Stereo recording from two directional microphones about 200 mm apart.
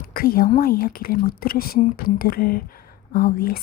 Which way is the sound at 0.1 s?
50° left (ahead or behind).